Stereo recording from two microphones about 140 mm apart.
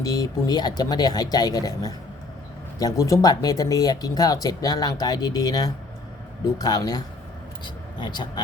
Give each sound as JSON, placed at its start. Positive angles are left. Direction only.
{"t": 0.0, "sound": "speech", "side_deg": 25}